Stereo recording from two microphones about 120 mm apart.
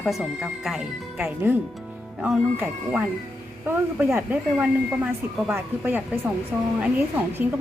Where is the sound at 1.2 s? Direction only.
15° right (ahead or behind).